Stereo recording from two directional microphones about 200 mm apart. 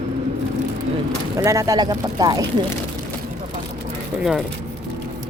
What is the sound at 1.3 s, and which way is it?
Speech, 15° right (ahead or behind).